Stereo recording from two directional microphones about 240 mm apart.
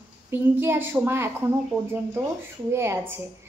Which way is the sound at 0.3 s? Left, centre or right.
Centre.